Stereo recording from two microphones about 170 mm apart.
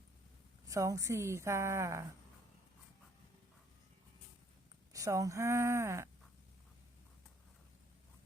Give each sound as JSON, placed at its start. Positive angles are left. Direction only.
{"t": 0.7, "sound": "a woman's voice", "side_deg": -20}
{"t": 4.9, "sound": "a woman's voice", "side_deg": -20}